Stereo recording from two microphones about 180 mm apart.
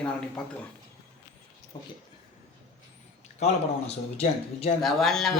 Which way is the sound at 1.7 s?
25° left (ahead or behind).